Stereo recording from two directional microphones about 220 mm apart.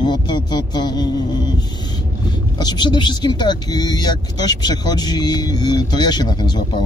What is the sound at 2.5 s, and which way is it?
Speech, 20° left (ahead or behind).